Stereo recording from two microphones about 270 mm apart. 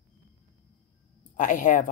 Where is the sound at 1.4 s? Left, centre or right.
Left.